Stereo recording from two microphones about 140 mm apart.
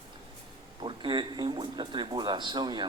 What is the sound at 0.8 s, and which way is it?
Speech, 35° right (ahead or behind).